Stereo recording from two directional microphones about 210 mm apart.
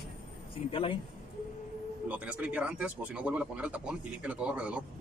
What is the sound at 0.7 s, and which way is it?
Speech, 25° left (ahead or behind).